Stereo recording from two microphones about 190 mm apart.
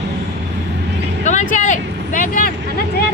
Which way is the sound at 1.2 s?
40° left (ahead or behind).